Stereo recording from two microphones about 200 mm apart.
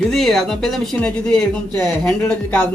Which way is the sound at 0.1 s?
Centre (ahead or behind).